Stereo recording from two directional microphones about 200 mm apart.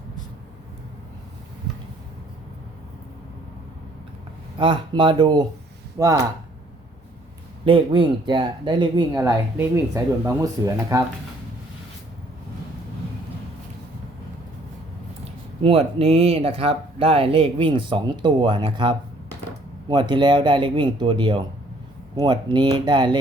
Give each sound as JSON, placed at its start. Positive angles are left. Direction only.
{"t": 4.5, "sound": "speech", "side_deg": -25}
{"t": 7.6, "sound": "speech", "side_deg": -25}
{"t": 15.2, "sound": "speech", "side_deg": -30}